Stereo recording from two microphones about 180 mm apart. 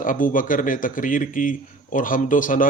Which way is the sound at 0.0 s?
50° left (ahead or behind).